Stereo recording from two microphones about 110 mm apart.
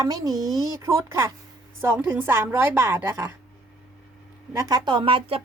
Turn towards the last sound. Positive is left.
turn(degrees=-55)  # may be behind; listen again after turning